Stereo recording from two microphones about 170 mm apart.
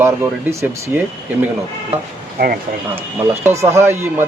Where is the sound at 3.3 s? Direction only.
15° right (ahead or behind).